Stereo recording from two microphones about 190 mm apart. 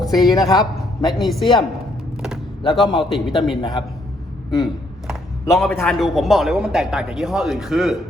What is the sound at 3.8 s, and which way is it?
Speech, 25° left (ahead or behind).